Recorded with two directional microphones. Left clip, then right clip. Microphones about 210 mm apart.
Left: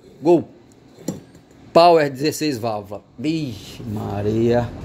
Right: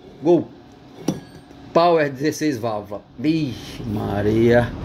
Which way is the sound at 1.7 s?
30° left (ahead or behind).